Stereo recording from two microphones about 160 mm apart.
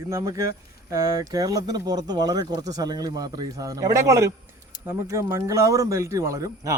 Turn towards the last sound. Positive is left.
turn(degrees=-20)  # may be behind; listen again after turning